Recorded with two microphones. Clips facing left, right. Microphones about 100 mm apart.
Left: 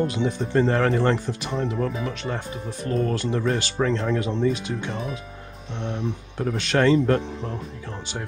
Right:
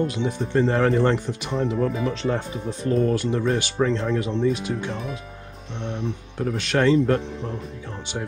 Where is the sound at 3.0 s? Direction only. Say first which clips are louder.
Even; 10° right (ahead or behind).